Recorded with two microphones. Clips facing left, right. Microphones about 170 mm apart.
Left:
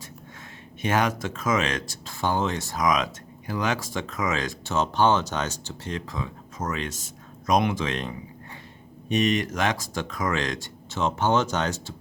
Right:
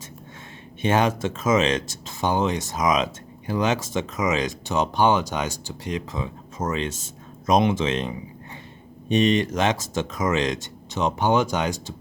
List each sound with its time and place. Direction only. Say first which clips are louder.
0.8 s speech: right 3 dB; 25° right (ahead or behind)